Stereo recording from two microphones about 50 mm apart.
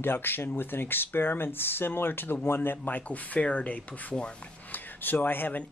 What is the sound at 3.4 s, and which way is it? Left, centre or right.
Speech, left.